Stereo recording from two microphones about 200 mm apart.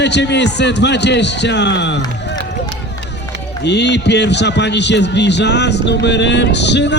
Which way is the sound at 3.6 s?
60° left (ahead or behind).